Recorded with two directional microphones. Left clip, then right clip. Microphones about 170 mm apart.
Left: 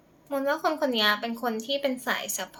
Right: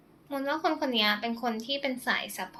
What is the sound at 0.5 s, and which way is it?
A woman's voice, 15° left (ahead or behind).